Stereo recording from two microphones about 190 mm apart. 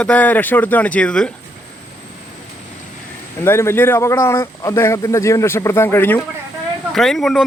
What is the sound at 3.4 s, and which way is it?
Speech, 15° left (ahead or behind).